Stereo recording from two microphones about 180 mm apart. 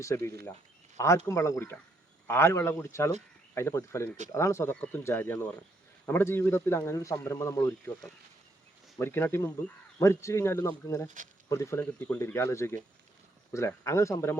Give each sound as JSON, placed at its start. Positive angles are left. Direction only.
{"t": 0.0, "sound": "speech", "side_deg": 15}
{"t": 9.0, "sound": "speech", "side_deg": 15}